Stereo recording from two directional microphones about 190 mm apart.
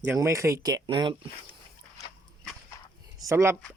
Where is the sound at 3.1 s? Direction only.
15° right (ahead or behind).